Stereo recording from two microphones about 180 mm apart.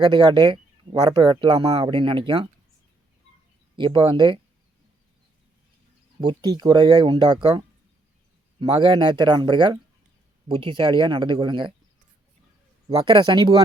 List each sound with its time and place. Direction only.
0.0 s speech: 25° right (ahead or behind)
3.8 s speech: 25° right (ahead or behind)
6.1 s speech: 25° right (ahead or behind)
8.6 s speech: 25° right (ahead or behind)
12.9 s speech: 25° right (ahead or behind)